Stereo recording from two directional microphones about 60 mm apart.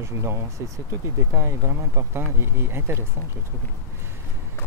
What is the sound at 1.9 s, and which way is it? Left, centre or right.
Speech, right.